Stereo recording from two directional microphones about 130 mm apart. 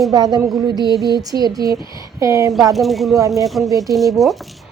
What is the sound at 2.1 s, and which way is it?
Speech, 25° right (ahead or behind).